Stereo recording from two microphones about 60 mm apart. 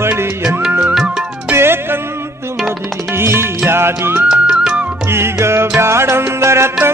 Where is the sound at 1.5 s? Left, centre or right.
Right.